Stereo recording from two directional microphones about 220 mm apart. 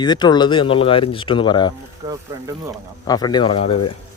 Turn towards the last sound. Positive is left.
turn(degrees=25)  # may be behind; listen again after turning